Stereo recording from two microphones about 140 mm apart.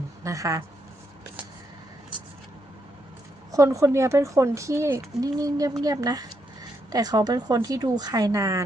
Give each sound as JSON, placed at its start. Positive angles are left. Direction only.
{"t": 0.3, "sound": "speech", "side_deg": -25}
{"t": 3.5, "sound": "speech", "side_deg": -20}